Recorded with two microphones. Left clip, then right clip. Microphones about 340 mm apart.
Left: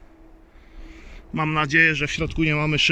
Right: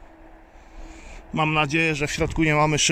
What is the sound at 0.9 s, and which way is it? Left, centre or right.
Speech, centre.